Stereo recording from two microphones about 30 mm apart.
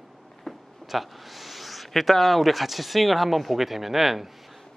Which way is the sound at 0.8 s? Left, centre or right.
Centre.